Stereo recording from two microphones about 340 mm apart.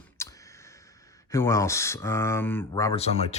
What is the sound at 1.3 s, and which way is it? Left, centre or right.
Speech, centre.